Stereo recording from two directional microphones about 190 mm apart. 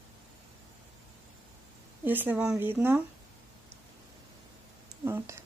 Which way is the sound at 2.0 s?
10° right (ahead or behind).